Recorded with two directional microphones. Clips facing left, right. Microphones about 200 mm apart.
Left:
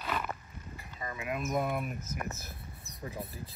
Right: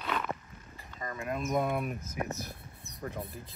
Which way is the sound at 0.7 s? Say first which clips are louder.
Right 1 dB; 5° left (ahead or behind).